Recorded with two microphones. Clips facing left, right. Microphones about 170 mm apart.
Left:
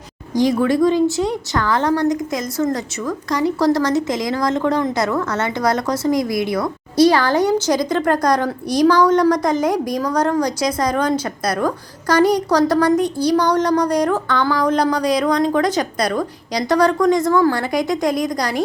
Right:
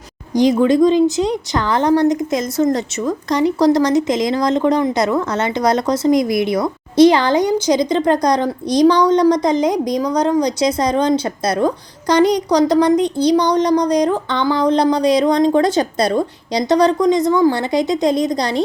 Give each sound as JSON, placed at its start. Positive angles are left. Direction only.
{"t": 0.3, "sound": "a woman's voice", "side_deg": -20}